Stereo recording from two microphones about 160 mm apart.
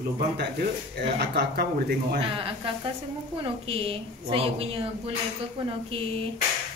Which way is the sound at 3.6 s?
35° right (ahead or behind).